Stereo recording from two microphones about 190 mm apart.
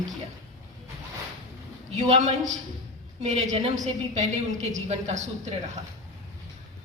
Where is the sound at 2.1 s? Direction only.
35° right (ahead or behind).